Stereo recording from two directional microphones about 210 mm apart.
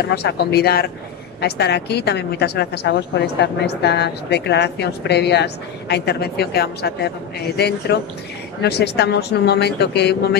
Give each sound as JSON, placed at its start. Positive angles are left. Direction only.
{"t": 0.1, "sound": "a woman's voice", "side_deg": 50}